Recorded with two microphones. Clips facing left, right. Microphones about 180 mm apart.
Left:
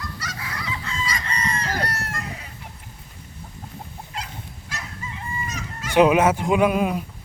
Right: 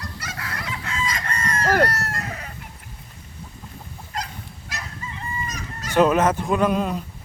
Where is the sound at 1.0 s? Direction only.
50° right (ahead or behind).